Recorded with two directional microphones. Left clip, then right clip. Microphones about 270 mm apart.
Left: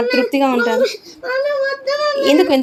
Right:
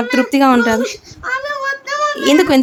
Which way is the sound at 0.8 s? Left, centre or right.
Centre.